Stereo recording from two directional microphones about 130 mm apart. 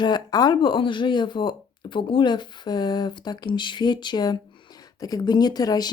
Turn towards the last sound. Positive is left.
turn(degrees=30)  # may be behind; listen again after turning